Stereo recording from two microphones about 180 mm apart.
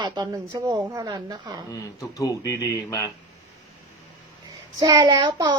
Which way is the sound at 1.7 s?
20° left (ahead or behind).